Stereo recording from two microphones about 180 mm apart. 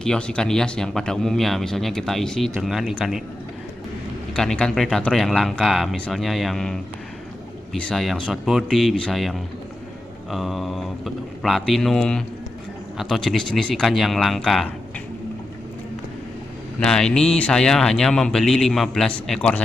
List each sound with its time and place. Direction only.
0.0 s speech: 5° left (ahead or behind)
4.4 s speech: 5° left (ahead or behind)
7.9 s speech: centre (ahead or behind)
16.8 s speech: 5° left (ahead or behind)